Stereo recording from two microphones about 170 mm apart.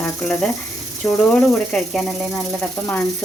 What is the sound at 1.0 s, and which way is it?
Speech, 15° left (ahead or behind).